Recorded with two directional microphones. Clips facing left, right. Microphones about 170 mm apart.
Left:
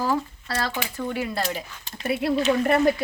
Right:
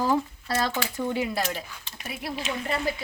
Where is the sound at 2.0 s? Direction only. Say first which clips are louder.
Left 11 dB; 65° left (ahead or behind).